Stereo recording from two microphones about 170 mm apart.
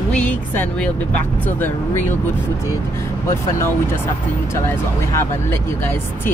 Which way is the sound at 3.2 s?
15° left (ahead or behind).